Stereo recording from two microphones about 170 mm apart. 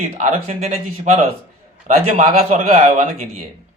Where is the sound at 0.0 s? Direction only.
45° right (ahead or behind).